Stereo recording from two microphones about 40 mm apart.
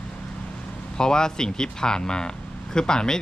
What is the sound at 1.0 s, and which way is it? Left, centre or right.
Speech, centre.